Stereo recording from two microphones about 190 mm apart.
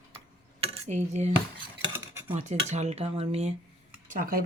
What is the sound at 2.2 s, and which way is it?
Speech, 35° right (ahead or behind).